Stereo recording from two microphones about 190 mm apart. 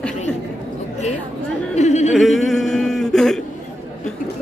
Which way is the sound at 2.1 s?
Centre (ahead or behind).